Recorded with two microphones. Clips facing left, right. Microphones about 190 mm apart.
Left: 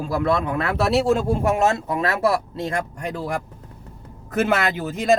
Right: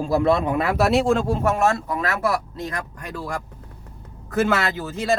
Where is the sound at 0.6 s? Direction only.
Centre (ahead or behind); by 5.0 s 20° left (ahead or behind).